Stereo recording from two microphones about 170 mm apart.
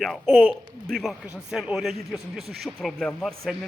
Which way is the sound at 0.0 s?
Centre (ahead or behind).